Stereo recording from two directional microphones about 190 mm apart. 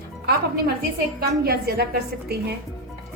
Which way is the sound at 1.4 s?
55° right (ahead or behind).